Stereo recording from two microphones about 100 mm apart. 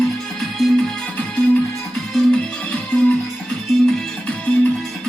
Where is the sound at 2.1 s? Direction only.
5° left (ahead or behind).